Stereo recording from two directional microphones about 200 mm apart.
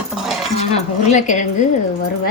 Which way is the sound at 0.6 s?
35° left (ahead or behind).